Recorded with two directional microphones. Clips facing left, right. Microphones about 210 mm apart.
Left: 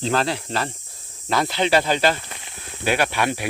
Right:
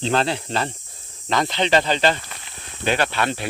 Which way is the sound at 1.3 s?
5° left (ahead or behind).